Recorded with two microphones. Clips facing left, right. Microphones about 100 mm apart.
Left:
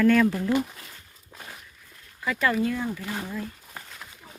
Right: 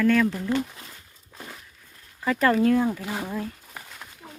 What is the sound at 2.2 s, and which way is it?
Speech, 35° right (ahead or behind).